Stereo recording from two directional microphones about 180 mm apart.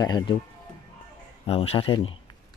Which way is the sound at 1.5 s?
30° left (ahead or behind).